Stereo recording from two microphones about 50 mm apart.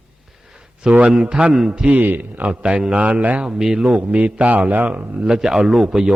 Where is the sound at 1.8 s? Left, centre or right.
Right.